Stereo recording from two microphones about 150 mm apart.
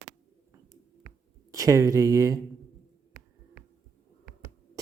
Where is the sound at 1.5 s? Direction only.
20° right (ahead or behind).